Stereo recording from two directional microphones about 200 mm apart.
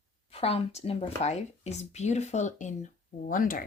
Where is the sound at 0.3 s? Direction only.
30° left (ahead or behind).